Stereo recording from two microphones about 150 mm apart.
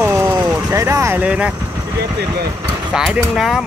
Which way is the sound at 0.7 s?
20° right (ahead or behind).